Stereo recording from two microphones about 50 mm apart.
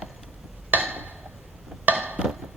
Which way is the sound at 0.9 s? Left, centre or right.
Right.